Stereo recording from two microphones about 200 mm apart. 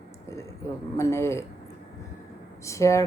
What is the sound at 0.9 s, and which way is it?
Speech, 15° left (ahead or behind).